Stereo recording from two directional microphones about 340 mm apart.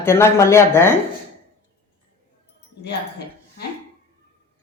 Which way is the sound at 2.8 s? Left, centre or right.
Left.